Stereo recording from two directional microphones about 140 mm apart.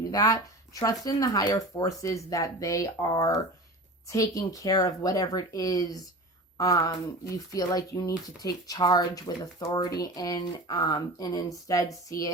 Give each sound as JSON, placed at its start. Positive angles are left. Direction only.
{"t": 0.1, "sound": "speech", "side_deg": 25}